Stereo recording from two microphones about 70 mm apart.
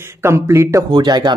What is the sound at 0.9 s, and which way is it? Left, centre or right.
Speech, right.